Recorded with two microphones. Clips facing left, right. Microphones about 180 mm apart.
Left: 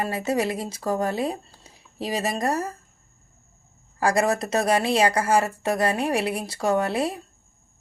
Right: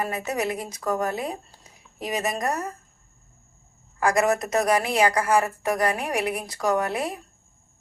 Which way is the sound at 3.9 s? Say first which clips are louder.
Even; 30° left (ahead or behind).